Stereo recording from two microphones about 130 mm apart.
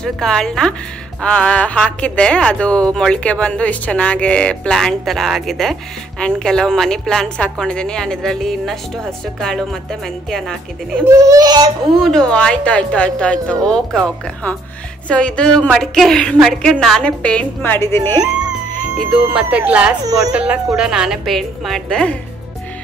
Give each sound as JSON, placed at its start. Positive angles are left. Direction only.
{"t": 0.0, "sound": "a woman's voice", "side_deg": 5}
{"t": 11.1, "sound": "a child's voice", "side_deg": -25}
{"t": 12.0, "sound": "a woman's voice", "side_deg": 5}
{"t": 19.3, "sound": "a woman's voice", "side_deg": -10}